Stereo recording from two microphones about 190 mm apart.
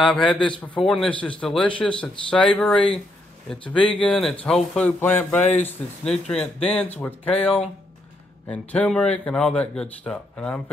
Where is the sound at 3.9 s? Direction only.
Centre (ahead or behind).